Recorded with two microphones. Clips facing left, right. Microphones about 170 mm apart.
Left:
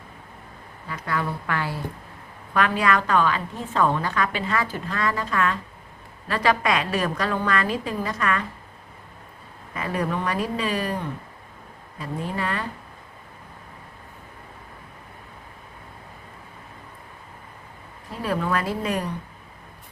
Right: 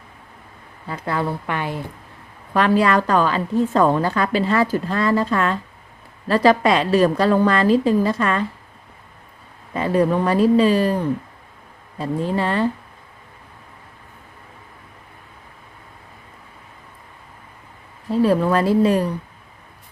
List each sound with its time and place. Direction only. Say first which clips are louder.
0.9 s a woman's voice: right 4 dB; 30° right (ahead or behind)
2.5 s a woman's voice: right 5 dB; 35° right (ahead or behind)
9.7 s a woman's voice: right 9 dB; 30° right (ahead or behind)
11.9 s a woman's voice: right 7 dB; 30° right (ahead or behind)
18.2 s a woman's voice: right 8 dB; 30° right (ahead or behind)